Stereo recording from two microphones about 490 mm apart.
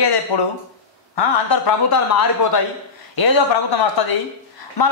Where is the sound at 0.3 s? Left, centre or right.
Left.